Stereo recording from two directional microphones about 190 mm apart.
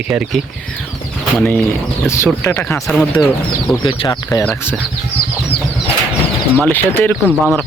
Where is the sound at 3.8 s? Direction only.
25° left (ahead or behind).